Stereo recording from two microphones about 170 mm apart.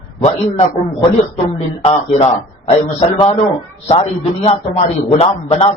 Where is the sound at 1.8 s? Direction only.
35° left (ahead or behind).